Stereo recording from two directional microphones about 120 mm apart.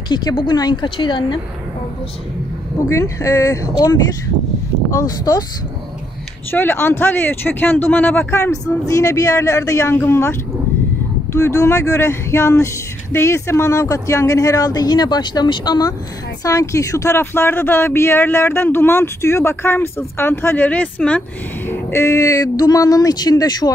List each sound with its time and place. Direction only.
0.1 s a woman's voice: 35° left (ahead or behind)
2.9 s a woman's voice: 25° left (ahead or behind)
6.5 s speech: 15° left (ahead or behind)
11.3 s speech: 25° left (ahead or behind)